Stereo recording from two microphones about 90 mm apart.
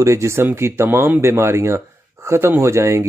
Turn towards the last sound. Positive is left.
turn(degrees=-30)  # may be behind; listen again after turning